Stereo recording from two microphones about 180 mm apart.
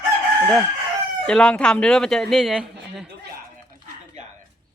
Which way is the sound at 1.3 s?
5° left (ahead or behind).